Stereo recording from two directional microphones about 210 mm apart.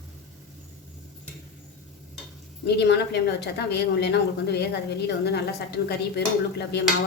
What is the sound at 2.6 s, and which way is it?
A woman's voice, 55° left (ahead or behind).